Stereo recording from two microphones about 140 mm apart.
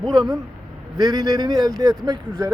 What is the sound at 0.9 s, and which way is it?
Speech, 30° right (ahead or behind).